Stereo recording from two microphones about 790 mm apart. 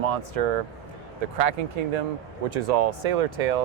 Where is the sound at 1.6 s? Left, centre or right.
Right.